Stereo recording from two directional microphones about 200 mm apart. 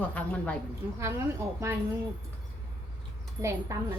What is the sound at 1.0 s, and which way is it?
Speech, 15° right (ahead or behind).